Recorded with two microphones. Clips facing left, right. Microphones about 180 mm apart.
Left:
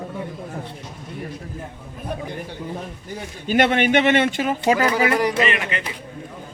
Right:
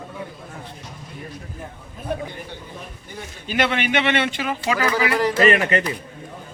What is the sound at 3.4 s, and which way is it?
Speech, 50° left (ahead or behind).